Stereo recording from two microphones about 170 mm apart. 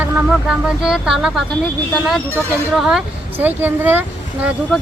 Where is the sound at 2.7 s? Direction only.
Centre (ahead or behind).